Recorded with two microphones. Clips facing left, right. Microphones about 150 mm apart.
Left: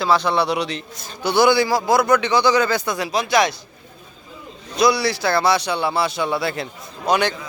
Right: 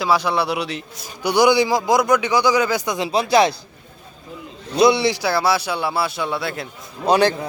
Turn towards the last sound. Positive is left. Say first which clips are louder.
# right 3 dB
turn(degrees=-35)  # may be behind; listen again after turning